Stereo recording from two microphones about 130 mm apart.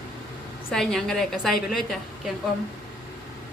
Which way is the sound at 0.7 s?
5° left (ahead or behind).